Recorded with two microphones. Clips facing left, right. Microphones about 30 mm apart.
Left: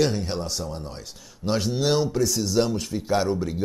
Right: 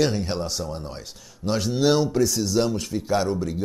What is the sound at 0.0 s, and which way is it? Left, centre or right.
Speech, centre.